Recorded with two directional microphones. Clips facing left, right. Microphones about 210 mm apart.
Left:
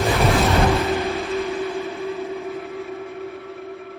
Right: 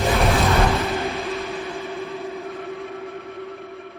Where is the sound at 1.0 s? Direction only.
Centre (ahead or behind).